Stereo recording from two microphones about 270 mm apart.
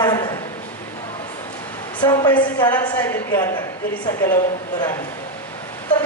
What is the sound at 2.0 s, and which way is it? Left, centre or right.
A woman's voice, centre.